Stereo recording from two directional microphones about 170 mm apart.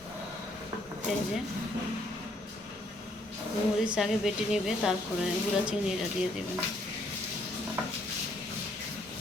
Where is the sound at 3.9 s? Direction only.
Centre (ahead or behind).